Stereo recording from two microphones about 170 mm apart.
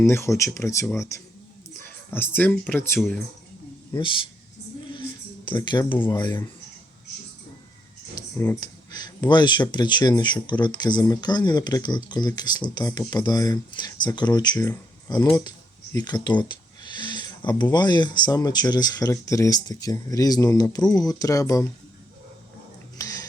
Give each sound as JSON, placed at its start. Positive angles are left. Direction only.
{"t": 0.1, "sound": "speech", "side_deg": 15}
{"t": 5.5, "sound": "speech", "side_deg": 25}
{"t": 8.6, "sound": "speech", "side_deg": 25}
{"t": 23.0, "sound": "a sound", "side_deg": 20}